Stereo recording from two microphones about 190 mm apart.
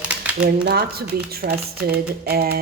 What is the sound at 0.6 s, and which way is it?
Speech, 55° right (ahead or behind).